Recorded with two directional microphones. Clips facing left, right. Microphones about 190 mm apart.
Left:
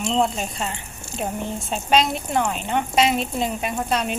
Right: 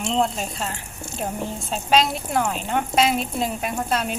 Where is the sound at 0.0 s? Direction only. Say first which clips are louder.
Left 1 dB; centre (ahead or behind).